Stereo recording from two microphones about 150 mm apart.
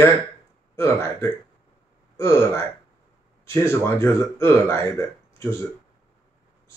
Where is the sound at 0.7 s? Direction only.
20° left (ahead or behind).